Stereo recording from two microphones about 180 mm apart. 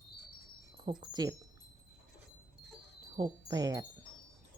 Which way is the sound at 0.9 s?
20° right (ahead or behind).